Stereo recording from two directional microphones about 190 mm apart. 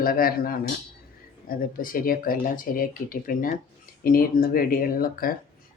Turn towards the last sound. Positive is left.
turn(degrees=50)  # may be behind; listen again after turning